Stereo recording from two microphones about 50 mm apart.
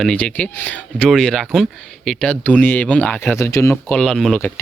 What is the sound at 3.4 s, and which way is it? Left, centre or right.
Speech, left.